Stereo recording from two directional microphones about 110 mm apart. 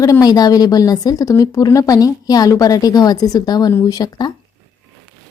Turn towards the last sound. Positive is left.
turn(degrees=35)  # may be behind; listen again after turning